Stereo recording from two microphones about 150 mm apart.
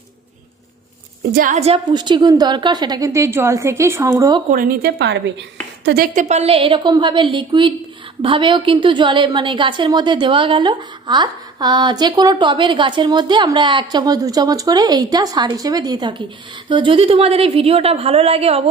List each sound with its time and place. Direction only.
1.3 s a woman's voice: 70° right (ahead or behind)
1.5 s a woman's voice: 45° right (ahead or behind)
1.9 s a woman's voice: 30° right (ahead or behind)
4.5 s a woman's voice: 70° right (ahead or behind)
5.9 s a woman's voice: 80° right
6.2 s a woman's voice: 45° right (ahead or behind)